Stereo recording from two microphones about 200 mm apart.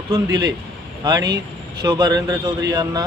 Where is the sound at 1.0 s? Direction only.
20° right (ahead or behind).